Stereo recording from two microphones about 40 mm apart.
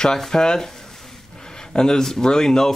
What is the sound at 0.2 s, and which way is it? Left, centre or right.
Speech, centre.